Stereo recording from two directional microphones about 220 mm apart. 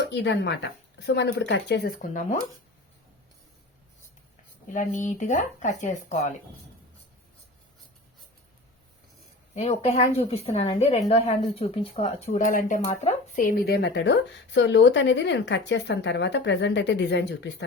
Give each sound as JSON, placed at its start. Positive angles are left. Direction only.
{"t": 0.0, "sound": "speech", "side_deg": 55}
{"t": 4.7, "sound": "speech", "side_deg": 35}
{"t": 9.6, "sound": "a woman's voice", "side_deg": 25}